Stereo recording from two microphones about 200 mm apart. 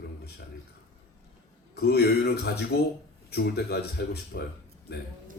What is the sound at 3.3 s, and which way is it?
A woman's voice, 55° left (ahead or behind).